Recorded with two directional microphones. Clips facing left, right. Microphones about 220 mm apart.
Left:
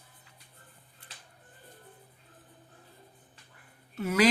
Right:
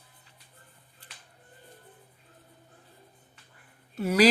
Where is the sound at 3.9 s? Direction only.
35° right (ahead or behind).